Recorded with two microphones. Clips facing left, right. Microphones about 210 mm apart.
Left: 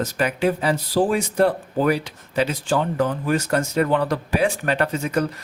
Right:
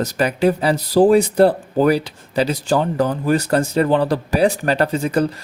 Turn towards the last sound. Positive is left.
turn(degrees=-30)  # may be behind; listen again after turning